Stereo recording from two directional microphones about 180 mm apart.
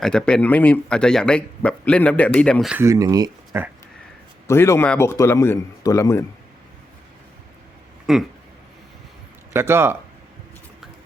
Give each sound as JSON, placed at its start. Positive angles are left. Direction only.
{"t": 0.0, "sound": "speech", "side_deg": 5}
{"t": 2.7, "sound": "speech", "side_deg": -15}
{"t": 4.4, "sound": "a man's voice", "side_deg": 15}
{"t": 8.1, "sound": "speech", "side_deg": 0}
{"t": 9.5, "sound": "speech", "side_deg": -15}